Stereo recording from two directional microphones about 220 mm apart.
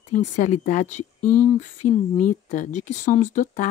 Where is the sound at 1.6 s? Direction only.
35° left (ahead or behind).